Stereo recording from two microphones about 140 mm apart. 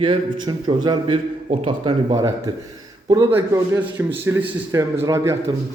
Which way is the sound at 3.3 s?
15° right (ahead or behind).